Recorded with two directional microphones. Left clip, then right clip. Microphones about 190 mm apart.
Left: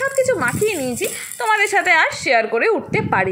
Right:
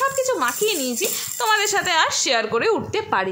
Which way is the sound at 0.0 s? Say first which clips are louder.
Left 3 dB; 5° left (ahead or behind).